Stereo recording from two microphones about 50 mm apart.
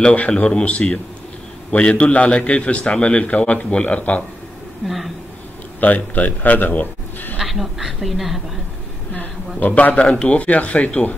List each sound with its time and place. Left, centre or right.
0.1 s speech: left
4.8 s a woman's voice: centre
5.8 s speech: left
7.3 s a woman's voice: centre
9.1 s a man's voice: left
10.0 s speech: centre